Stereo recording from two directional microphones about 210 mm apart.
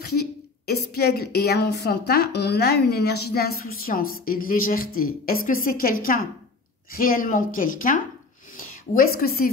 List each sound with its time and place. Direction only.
0.0 s a woman's voice: 50° left (ahead or behind)